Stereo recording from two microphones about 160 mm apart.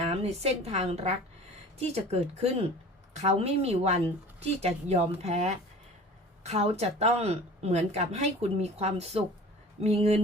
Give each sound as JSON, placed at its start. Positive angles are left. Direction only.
{"t": 0.0, "sound": "a woman's voice", "side_deg": -40}